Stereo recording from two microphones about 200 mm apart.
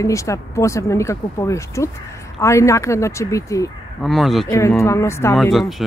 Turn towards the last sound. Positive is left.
turn(degrees=0)  # may be behind; listen again after turning